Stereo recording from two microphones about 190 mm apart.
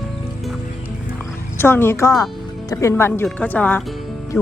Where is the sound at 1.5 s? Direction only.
10° left (ahead or behind).